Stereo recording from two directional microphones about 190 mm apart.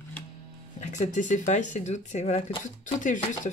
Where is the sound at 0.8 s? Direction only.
40° left (ahead or behind).